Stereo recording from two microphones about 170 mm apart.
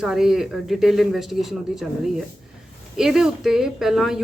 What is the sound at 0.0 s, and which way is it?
Speech, 5° right (ahead or behind).